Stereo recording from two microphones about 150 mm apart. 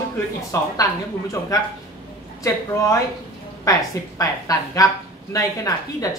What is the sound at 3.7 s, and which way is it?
Speech, 20° left (ahead or behind).